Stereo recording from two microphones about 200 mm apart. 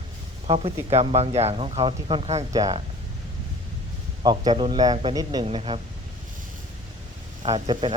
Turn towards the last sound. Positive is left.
turn(degrees=-25)  # may be behind; listen again after turning